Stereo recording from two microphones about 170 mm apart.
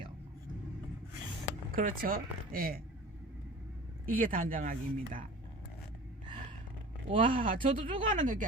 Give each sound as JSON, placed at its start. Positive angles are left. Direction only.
{"t": 1.7, "sound": "speech", "side_deg": -55}
{"t": 4.0, "sound": "speech", "side_deg": -50}
{"t": 7.3, "sound": "speech", "side_deg": -50}